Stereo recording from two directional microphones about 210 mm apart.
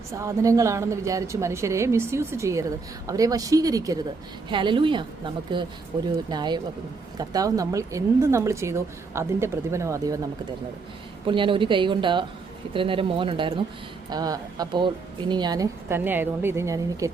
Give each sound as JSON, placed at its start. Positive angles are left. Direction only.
{"t": 0.1, "sound": "a woman's voice", "side_deg": -15}
{"t": 11.3, "sound": "a woman's voice", "side_deg": -25}